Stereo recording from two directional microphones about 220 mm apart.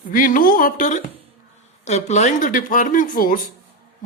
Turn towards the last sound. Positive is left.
turn(degrees=35)  # may be behind; listen again after turning